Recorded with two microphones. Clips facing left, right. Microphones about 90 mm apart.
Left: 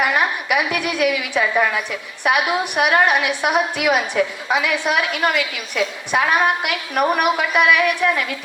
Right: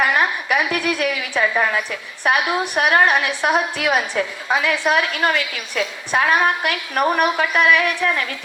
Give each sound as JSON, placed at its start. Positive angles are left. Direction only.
{"t": 0.0, "sound": "a woman's voice", "side_deg": -40}